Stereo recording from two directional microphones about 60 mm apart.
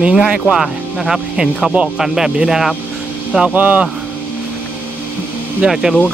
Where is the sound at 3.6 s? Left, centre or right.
Right.